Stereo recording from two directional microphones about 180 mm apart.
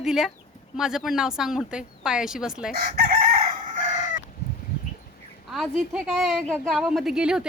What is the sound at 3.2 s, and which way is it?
Chicken, 45° right (ahead or behind).